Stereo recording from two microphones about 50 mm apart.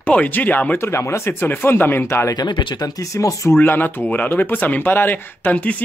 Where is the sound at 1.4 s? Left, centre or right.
Left.